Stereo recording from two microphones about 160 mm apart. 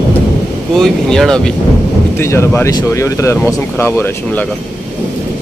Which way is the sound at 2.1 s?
15° left (ahead or behind).